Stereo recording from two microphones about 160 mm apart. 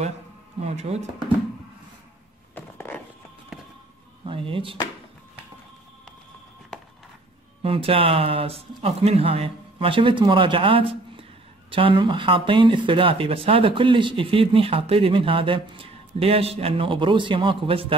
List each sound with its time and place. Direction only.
0.6 s speech: 40° right (ahead or behind)
2.5 s a sound: 10° left (ahead or behind)
4.2 s speech: 35° right (ahead or behind)
7.6 s speech: 35° right (ahead or behind)